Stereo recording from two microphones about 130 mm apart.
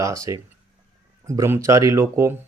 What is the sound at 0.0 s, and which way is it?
Speech, 25° right (ahead or behind).